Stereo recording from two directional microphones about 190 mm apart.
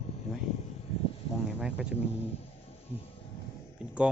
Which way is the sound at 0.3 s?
35° left (ahead or behind).